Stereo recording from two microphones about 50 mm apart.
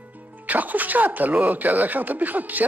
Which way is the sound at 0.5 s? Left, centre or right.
Right.